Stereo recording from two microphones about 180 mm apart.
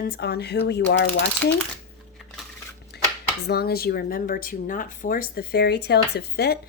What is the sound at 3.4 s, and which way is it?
Speech, 60° left (ahead or behind).